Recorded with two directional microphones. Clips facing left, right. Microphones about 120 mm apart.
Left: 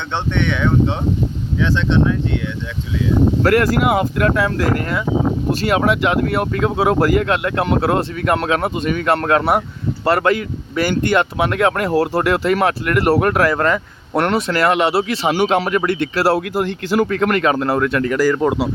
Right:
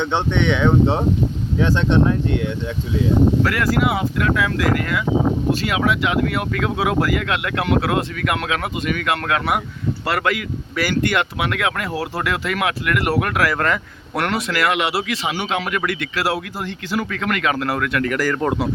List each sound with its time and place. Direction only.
0.1 s speech: 15° right (ahead or behind)
1.5 s speech: 45° right (ahead or behind)
3.4 s speech: 45° left (ahead or behind)
4.4 s speech: 35° left (ahead or behind)
5.6 s speech: 45° left (ahead or behind)
16.6 s speech: 45° left (ahead or behind); by 18.2 s 25° left (ahead or behind)
18.2 s speech: 15° left (ahead or behind)